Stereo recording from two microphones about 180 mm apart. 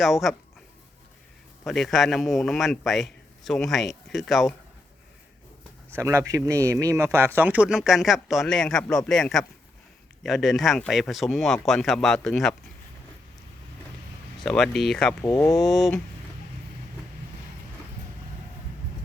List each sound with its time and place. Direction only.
0.0 s a man's voice: centre (ahead or behind)
1.6 s a man's voice: centre (ahead or behind)
6.0 s a man's voice: 15° right (ahead or behind); by 12.5 s centre (ahead or behind)
14.3 s a man's voice: centre (ahead or behind)
15.2 s speech: 15° left (ahead or behind)
15.5 s a man's voice: centre (ahead or behind)